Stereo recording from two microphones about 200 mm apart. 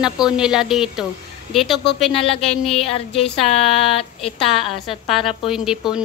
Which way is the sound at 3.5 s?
30° left (ahead or behind).